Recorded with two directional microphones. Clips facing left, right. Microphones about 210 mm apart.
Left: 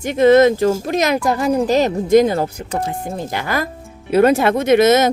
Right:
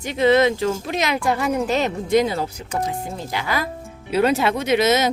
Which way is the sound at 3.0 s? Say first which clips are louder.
Left 4 dB; 50° left (ahead or behind).